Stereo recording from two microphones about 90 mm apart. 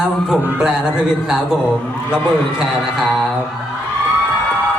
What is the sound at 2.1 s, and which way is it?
A woman's voice, 5° right (ahead or behind).